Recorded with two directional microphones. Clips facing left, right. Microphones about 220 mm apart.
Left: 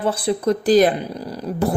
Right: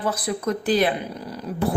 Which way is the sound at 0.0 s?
30° left (ahead or behind).